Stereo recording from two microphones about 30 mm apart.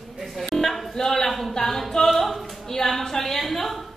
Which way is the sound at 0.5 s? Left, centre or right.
Centre.